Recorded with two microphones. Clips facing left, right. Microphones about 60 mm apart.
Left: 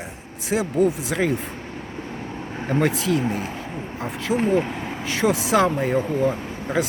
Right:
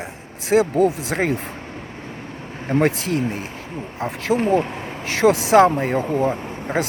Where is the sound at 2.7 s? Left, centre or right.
Right.